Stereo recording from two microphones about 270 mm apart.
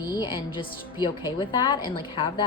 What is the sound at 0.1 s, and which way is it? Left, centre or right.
A woman's voice, centre.